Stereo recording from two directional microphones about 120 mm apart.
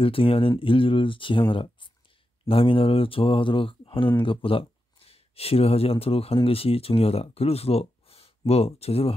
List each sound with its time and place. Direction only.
0.0 s speech: 50° left (ahead or behind)